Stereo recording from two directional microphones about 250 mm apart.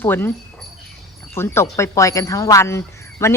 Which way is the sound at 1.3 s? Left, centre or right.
Centre.